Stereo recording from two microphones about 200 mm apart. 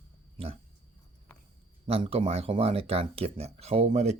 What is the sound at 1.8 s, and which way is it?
Speech, 25° right (ahead or behind).